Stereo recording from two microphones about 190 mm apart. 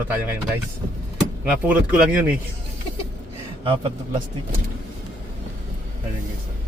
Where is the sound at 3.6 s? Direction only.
25° right (ahead or behind).